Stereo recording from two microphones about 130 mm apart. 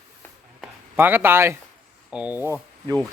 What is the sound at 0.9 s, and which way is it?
Speech, 15° right (ahead or behind).